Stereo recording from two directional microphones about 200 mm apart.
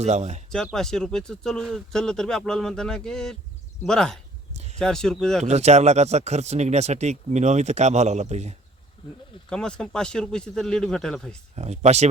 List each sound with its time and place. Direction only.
0.0 s speech: 35° right (ahead or behind)
0.5 s speech: centre (ahead or behind)
4.5 s a sound: 35° right (ahead or behind)
4.8 s speech: 5° left (ahead or behind)
5.5 s speech: 35° right (ahead or behind)
9.5 s speech: 5° left (ahead or behind)
11.5 s speech: 35° right (ahead or behind)